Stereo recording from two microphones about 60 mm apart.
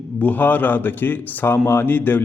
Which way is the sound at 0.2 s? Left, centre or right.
Left.